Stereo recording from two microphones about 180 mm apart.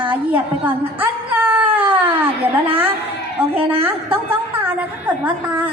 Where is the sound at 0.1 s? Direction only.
10° right (ahead or behind).